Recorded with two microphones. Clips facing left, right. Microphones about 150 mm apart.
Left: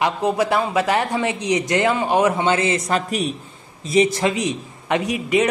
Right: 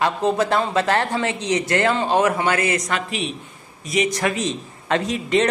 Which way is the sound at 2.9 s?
40° left (ahead or behind).